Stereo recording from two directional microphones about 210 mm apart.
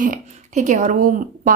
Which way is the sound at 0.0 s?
35° right (ahead or behind).